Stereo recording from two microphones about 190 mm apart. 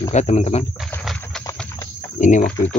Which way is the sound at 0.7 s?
5° left (ahead or behind).